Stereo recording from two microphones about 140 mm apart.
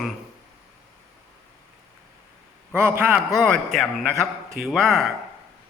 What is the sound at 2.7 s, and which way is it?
A man's voice, 15° right (ahead or behind).